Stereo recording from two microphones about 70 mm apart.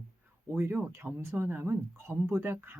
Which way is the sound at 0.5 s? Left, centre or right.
Right.